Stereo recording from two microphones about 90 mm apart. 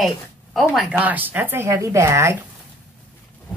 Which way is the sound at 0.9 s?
15° right (ahead or behind).